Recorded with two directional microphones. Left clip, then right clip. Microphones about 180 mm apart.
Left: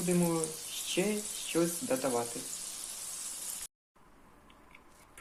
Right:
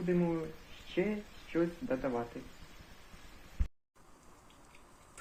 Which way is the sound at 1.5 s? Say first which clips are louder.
Left 2 dB; 15° left (ahead or behind).